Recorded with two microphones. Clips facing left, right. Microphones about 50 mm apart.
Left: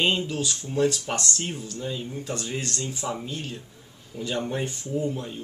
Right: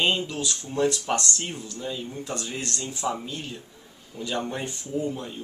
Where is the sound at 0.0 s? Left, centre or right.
Centre.